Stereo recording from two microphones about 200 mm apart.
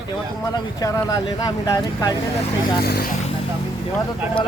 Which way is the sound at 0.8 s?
20° left (ahead or behind).